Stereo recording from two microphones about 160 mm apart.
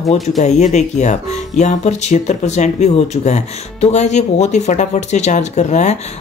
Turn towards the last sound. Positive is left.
turn(degrees=45)  # may be behind; listen again after turning